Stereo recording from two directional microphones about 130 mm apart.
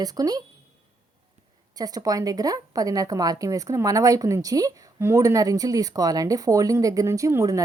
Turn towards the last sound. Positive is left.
turn(degrees=-25)  # may be behind; listen again after turning